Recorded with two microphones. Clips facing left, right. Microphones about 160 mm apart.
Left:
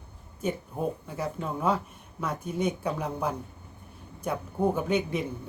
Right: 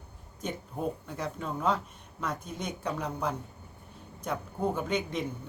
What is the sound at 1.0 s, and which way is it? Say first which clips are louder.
Speech: left 3 dB; 10° left (ahead or behind).